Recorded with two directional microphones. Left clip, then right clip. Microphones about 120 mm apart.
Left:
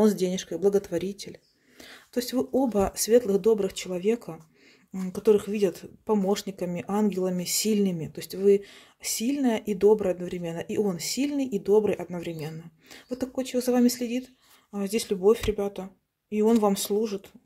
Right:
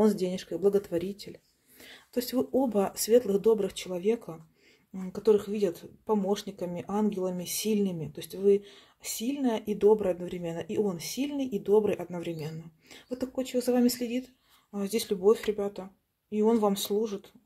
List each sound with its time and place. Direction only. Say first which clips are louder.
0.0 s speech: left 3 dB; 25° left (ahead or behind)
4.9 s speech: left 3 dB; 45° left (ahead or behind)